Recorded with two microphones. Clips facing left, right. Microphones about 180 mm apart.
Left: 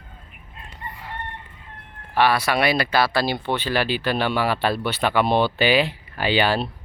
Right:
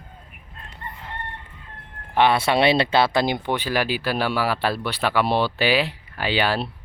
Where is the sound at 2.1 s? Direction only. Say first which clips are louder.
Right 1 dB; 20° right (ahead or behind); by 6.7 s centre (ahead or behind).